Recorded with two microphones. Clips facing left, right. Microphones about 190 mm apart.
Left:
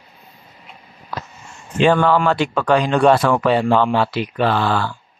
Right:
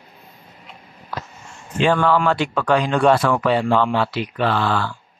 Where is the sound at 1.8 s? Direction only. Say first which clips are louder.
Left 3 dB; 20° left (ahead or behind).